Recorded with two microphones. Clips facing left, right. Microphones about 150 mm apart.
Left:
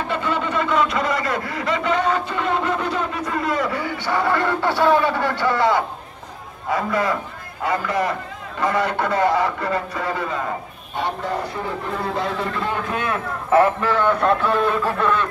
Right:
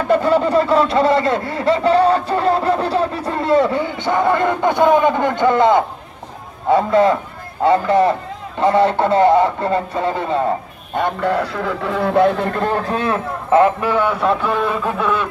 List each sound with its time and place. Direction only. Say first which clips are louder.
0.1 s speech: right 11 dB; 40° right (ahead or behind)
11.0 s a man's voice: right 6 dB; 60° right (ahead or behind); by 15.2 s 5° right (ahead or behind)